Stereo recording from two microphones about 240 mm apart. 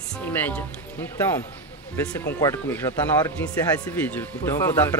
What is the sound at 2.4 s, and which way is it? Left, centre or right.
Speech, centre.